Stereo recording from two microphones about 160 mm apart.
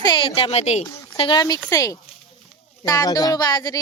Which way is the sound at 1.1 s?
30° left (ahead or behind).